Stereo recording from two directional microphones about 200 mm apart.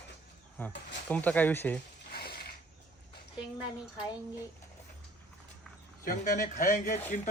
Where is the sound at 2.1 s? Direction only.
50° left (ahead or behind).